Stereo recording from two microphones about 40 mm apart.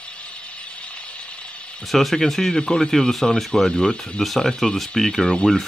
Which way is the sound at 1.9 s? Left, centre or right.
Centre.